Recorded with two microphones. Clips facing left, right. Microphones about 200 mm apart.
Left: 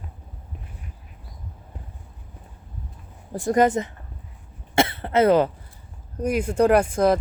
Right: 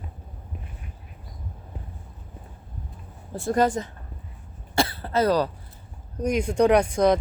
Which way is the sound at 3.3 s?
15° left (ahead or behind).